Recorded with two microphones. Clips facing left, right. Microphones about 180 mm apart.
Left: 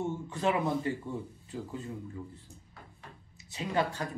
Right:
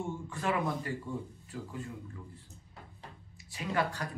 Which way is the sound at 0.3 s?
20° left (ahead or behind).